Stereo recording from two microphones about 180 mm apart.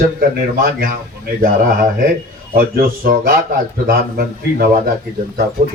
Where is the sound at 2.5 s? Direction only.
55° right (ahead or behind).